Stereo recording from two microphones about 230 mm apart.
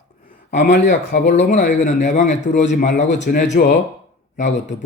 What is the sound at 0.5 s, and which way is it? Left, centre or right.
Speech, left.